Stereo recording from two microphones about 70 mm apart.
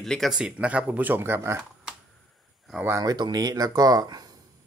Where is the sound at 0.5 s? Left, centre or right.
Centre; by 1.6 s right.